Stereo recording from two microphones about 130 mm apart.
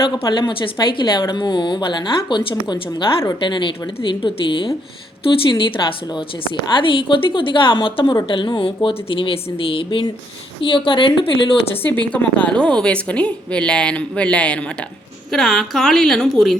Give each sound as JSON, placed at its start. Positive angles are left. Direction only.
{"t": 0.2, "sound": "a woman's voice", "side_deg": 35}
{"t": 11.8, "sound": "a woman's voice", "side_deg": 15}